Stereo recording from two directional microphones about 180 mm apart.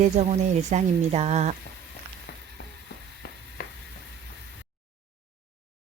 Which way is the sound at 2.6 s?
80° left.